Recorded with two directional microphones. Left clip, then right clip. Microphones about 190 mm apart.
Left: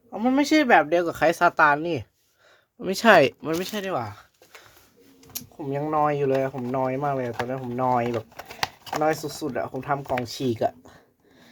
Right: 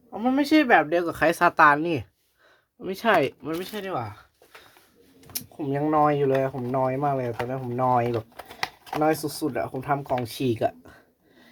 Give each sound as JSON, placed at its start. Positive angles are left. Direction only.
{"t": 0.1, "sound": "speech", "side_deg": 30}
{"t": 2.8, "sound": "speech", "side_deg": 35}
{"t": 5.3, "sound": "speech", "side_deg": 0}
{"t": 9.0, "sound": "speech", "side_deg": 5}
{"t": 9.4, "sound": "speech", "side_deg": 15}